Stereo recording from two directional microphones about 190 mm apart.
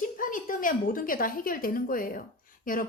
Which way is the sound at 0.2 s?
45° left (ahead or behind).